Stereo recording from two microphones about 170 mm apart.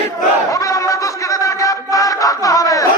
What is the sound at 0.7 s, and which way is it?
Music, 20° left (ahead or behind).